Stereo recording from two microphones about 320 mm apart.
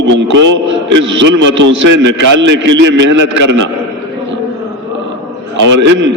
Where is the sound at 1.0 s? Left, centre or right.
Right.